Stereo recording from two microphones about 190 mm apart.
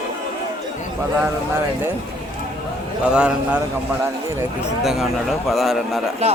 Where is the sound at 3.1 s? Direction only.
5° right (ahead or behind).